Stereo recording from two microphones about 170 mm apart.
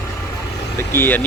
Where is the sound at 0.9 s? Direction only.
10° left (ahead or behind).